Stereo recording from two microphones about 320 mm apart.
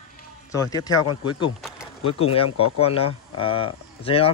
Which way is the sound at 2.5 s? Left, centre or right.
Left.